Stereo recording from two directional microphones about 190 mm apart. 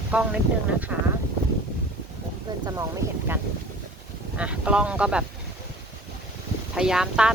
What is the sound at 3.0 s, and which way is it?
Speech, 15° right (ahead or behind).